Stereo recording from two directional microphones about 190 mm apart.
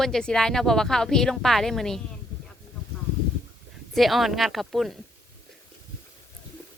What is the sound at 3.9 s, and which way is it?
Speech, centre (ahead or behind).